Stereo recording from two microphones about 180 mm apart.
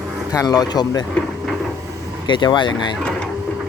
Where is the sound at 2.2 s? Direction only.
25° left (ahead or behind).